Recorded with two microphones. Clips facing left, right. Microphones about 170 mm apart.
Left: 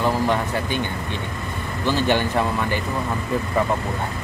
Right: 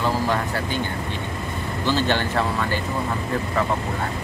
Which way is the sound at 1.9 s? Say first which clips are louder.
Left 2 dB; 15° left (ahead or behind).